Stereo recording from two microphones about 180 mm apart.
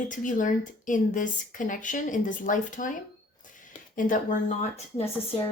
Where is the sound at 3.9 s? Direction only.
45° left (ahead or behind).